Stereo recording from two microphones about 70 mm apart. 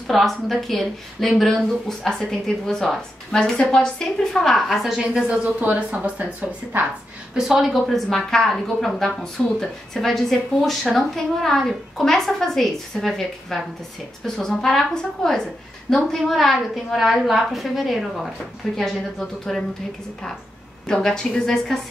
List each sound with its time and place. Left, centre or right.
0.0 s a woman's voice: centre
4.9 s a woman's voice: centre
7.3 s a woman's voice: centre
20.8 s a woman's voice: centre